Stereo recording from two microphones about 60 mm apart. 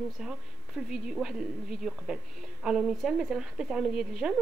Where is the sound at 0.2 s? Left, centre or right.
Centre.